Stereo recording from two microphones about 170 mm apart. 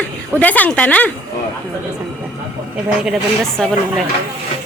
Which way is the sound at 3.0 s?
5° left (ahead or behind).